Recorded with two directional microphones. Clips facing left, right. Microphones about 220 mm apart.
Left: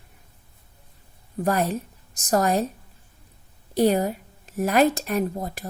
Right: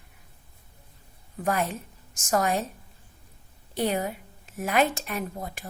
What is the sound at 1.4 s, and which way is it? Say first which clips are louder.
A woman's voice: left 4 dB; 40° left (ahead or behind).